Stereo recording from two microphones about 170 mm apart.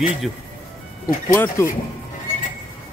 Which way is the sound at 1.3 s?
15° left (ahead or behind).